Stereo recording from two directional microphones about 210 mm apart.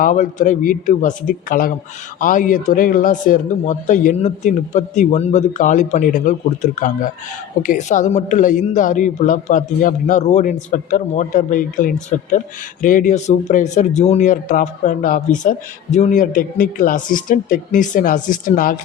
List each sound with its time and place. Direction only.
0.0 s speech: 35° left (ahead or behind)